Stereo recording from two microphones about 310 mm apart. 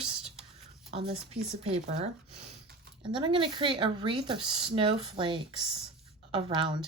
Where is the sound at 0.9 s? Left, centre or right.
Centre.